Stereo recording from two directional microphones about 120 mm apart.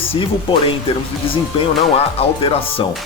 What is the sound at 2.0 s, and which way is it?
Speech, 55° left (ahead or behind).